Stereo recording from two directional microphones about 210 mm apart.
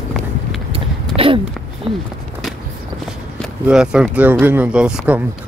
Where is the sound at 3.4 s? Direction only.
5° right (ahead or behind).